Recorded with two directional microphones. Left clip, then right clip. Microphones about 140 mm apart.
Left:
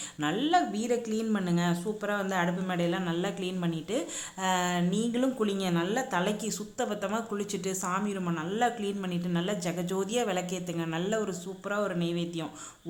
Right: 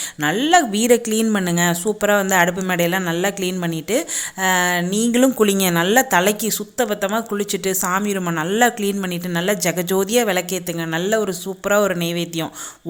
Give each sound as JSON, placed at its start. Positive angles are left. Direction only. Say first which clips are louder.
{"t": 0.2, "sound": "speech", "louder": "right 11 dB", "side_deg": -35}
{"t": 11.6, "sound": "speech", "louder": "right 14 dB", "side_deg": -40}